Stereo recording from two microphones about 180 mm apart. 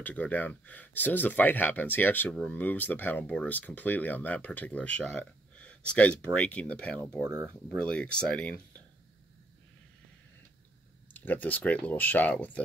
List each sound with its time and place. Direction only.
0.0 s speech: 10° left (ahead or behind)
7.2 s speech: 15° right (ahead or behind)
7.4 s speech: 5° left (ahead or behind)
11.1 s speech: 10° left (ahead or behind)